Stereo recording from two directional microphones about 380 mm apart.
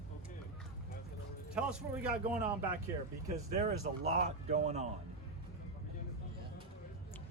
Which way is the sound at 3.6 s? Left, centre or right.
Centre.